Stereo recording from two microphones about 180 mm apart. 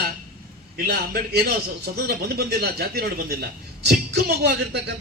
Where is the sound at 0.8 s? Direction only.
60° right (ahead or behind).